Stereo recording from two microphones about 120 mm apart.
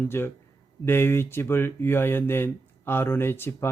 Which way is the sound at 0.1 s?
20° left (ahead or behind).